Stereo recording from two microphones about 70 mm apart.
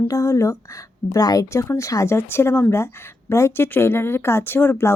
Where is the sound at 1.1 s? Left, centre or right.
Left.